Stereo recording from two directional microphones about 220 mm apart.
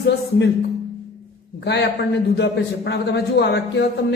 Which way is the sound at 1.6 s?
50° left (ahead or behind).